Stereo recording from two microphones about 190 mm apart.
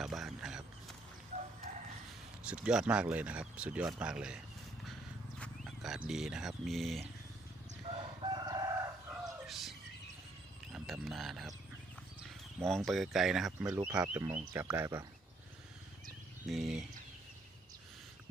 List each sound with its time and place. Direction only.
0.0 s a sound: centre (ahead or behind)
1.3 s livestock: 35° right (ahead or behind)
2.4 s speech: 5° right (ahead or behind)
5.4 s wild animals: centre (ahead or behind)
6.1 s speech: 5° right (ahead or behind)
7.9 s crowing: 25° right (ahead or behind)
9.5 s a sound: centre (ahead or behind)
10.7 s frog: 5° right (ahead or behind)
12.5 s speech: centre (ahead or behind); by 15.0 s 15° right (ahead or behind)
16.5 s speech: centre (ahead or behind)